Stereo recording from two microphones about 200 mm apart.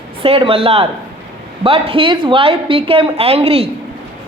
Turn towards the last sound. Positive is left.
turn(degrees=-30)  # may be behind; listen again after turning